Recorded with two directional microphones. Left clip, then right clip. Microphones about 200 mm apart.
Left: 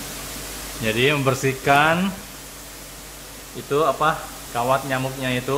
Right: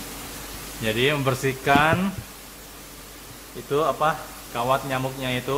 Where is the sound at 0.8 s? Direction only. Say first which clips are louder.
Left 3 dB; centre (ahead or behind).